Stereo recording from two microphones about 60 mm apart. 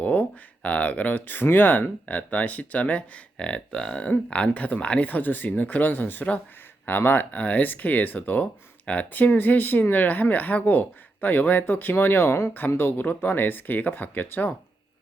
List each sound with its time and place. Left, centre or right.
0.0 s speech: left